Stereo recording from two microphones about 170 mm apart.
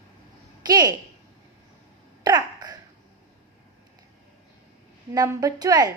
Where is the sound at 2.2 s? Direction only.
25° right (ahead or behind).